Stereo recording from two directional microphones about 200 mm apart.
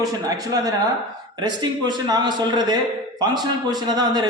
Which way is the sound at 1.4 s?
20° right (ahead or behind).